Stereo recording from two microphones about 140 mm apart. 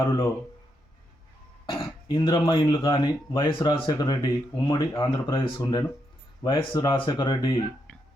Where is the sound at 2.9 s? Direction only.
40° left (ahead or behind).